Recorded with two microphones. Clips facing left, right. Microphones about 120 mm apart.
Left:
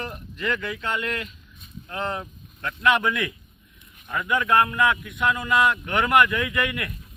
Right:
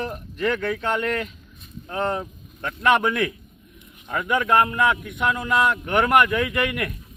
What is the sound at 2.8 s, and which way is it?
Speech, 45° right (ahead or behind).